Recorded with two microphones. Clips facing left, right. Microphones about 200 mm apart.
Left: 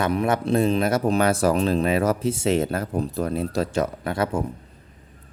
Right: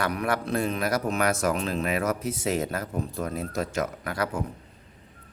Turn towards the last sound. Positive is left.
turn(degrees=25)  # may be behind; listen again after turning